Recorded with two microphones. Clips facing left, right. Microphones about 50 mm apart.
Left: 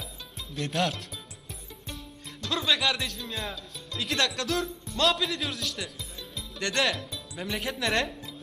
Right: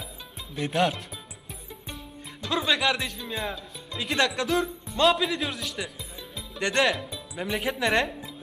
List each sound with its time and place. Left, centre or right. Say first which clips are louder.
0.5 s speech: right 4 dB; centre
2.4 s speech: right 2 dB; centre
6.3 s music: right 4 dB; centre
7.0 s speech: right 3 dB; centre